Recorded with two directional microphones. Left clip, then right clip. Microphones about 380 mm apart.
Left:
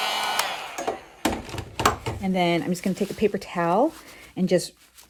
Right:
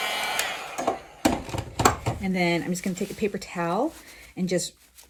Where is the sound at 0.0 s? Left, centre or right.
Centre.